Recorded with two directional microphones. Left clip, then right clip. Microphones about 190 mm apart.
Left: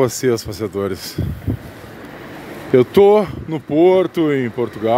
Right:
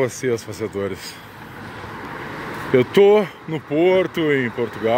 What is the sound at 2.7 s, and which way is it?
Speech, 20° left (ahead or behind).